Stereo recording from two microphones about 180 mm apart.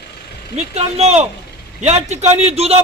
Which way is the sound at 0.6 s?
35° right (ahead or behind).